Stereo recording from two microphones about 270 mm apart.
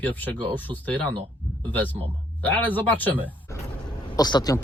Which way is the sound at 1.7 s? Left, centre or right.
Centre.